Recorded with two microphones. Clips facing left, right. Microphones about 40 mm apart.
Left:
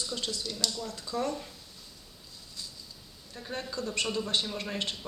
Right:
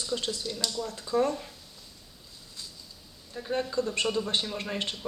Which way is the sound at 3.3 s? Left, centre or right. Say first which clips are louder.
Right 7 dB; centre.